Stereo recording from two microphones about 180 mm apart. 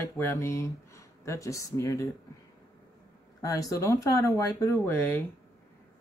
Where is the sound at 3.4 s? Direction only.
20° left (ahead or behind).